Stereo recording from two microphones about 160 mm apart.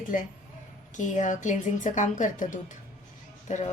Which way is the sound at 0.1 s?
55° left (ahead or behind).